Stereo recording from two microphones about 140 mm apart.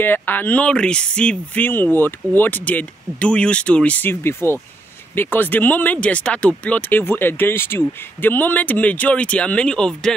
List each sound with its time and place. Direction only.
0.0 s speech: 15° left (ahead or behind)